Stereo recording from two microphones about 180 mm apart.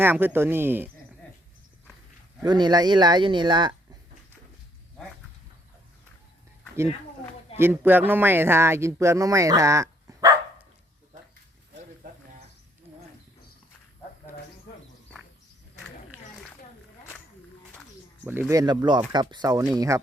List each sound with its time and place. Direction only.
0.0 s speech: 10° right (ahead or behind)
2.4 s speech: 25° right (ahead or behind)
7.6 s speech: 10° right (ahead or behind)
18.3 s speech: 15° right (ahead or behind)